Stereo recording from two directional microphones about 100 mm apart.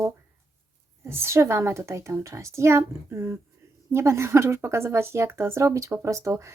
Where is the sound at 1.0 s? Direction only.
25° right (ahead or behind).